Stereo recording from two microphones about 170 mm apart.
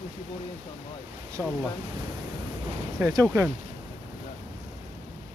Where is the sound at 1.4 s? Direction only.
15° right (ahead or behind).